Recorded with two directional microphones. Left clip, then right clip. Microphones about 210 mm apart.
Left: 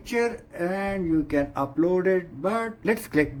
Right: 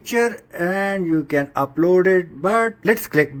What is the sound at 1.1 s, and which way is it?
Speech, 30° right (ahead or behind).